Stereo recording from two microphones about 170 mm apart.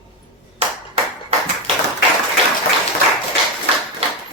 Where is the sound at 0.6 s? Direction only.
35° right (ahead or behind).